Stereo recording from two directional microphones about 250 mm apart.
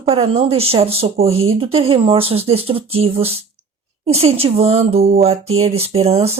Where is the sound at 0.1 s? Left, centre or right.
Right.